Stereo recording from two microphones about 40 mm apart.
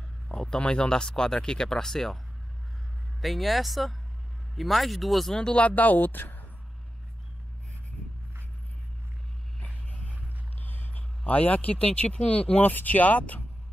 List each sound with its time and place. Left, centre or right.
0.3 s a sound: centre
0.6 s speech: left
3.2 s speech: centre
5.4 s speech: left
5.8 s speech: left
10.6 s a sound: left
12.3 s speech: left